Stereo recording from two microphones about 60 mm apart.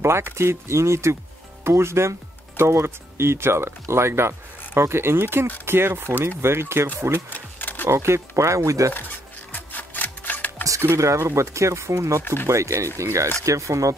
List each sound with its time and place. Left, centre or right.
0.0 s speech: right
7.2 s camera: left
7.8 s speech: right
9.5 s a sound: left
11.0 s speech: right